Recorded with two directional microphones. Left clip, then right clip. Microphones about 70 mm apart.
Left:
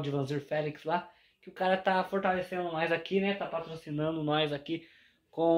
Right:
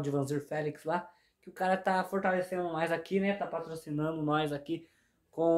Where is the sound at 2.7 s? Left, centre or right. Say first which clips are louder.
Left 3 dB; right.